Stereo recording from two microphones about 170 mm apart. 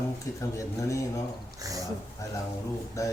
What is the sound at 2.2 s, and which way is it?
Speech, 20° left (ahead or behind).